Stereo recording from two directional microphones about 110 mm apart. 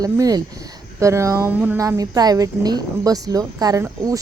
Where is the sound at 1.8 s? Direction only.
30° right (ahead or behind).